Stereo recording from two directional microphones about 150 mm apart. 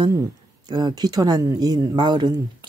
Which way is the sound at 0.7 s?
25° right (ahead or behind).